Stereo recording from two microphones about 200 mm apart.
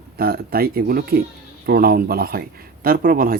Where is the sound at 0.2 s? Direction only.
50° right (ahead or behind).